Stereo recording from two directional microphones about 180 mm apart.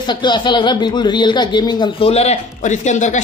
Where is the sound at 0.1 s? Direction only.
25° left (ahead or behind).